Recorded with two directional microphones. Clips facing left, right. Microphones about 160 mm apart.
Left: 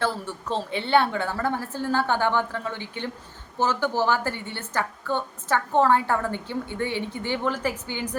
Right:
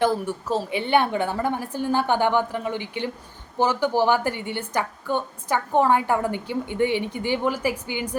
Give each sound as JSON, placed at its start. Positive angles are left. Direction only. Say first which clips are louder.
{"t": 0.0, "sound": "a woman's voice", "louder": "right 6 dB", "side_deg": -10}